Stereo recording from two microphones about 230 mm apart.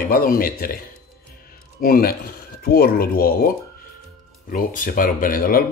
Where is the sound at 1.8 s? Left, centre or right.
Left.